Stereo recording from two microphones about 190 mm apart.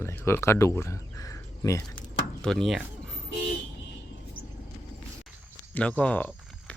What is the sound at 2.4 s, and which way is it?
Speech, centre (ahead or behind).